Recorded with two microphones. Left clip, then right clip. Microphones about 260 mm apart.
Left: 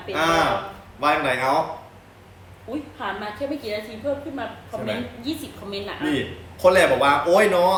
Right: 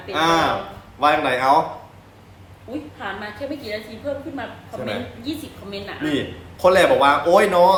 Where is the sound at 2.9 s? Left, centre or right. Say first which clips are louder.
Left 2 dB; centre.